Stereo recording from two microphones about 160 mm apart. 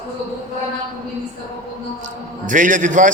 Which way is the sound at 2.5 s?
55° right (ahead or behind).